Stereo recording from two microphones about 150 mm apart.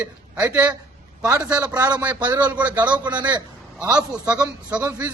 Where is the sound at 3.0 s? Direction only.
30° right (ahead or behind).